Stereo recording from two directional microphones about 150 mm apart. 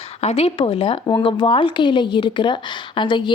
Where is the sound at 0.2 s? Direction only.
45° left (ahead or behind).